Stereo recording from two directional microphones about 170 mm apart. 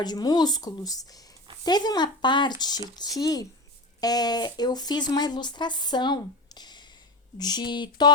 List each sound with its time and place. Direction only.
0.0 s speech: 25° left (ahead or behind)